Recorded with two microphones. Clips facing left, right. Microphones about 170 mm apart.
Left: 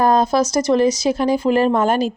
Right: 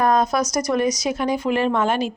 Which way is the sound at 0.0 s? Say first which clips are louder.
Left 3 dB; 30° left (ahead or behind).